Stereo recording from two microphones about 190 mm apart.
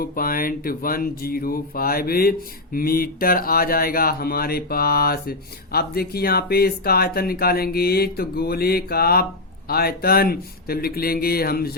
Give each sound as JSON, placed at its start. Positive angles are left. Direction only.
{"t": 0.0, "sound": "speech", "side_deg": 50}